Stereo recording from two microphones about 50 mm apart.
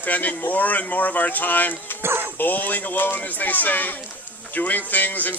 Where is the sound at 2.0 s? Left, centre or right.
Right.